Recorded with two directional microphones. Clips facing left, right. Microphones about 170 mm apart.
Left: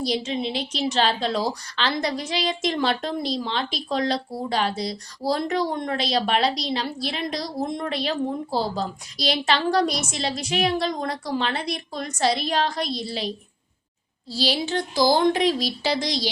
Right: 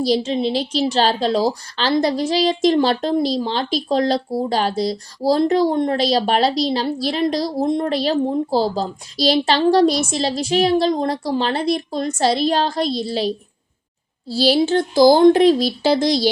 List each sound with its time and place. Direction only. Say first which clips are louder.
0.0 s a woman's voice: right 7 dB; 30° right (ahead or behind)
14.3 s a woman's voice: right 9 dB; 35° right (ahead or behind); by 15.4 s 50° right (ahead or behind)